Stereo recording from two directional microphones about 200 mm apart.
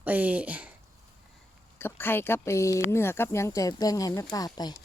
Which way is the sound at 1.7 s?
10° left (ahead or behind).